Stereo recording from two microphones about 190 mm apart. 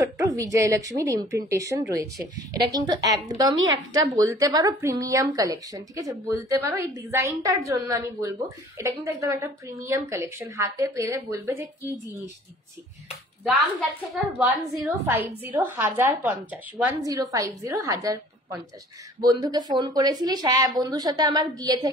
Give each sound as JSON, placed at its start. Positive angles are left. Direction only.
{"t": 0.0, "sound": "a woman's voice", "side_deg": -15}
{"t": 3.5, "sound": "a woman's voice", "side_deg": -90}
{"t": 4.2, "sound": "a woman's voice", "side_deg": -15}
{"t": 14.4, "sound": "a woman's voice", "side_deg": 0}
{"t": 15.0, "sound": "a woman's voice", "side_deg": -10}